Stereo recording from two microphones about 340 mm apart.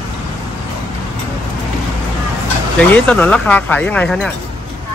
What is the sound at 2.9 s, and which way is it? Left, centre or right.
Speech, centre.